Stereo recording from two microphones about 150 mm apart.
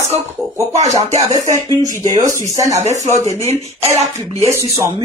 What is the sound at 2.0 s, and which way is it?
Speech, 55° right (ahead or behind).